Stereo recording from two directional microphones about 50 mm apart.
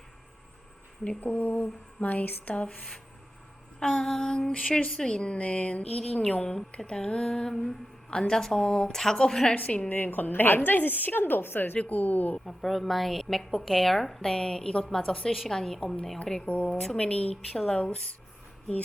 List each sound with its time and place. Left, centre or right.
1.2 s a woman's voice: left
3.8 s a woman's voice: centre
9.6 s a woman's voice: left
11.8 s a woman's voice: left
12.5 s a woman's voice: centre